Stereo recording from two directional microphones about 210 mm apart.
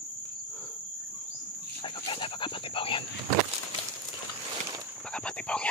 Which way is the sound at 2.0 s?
25° left (ahead or behind).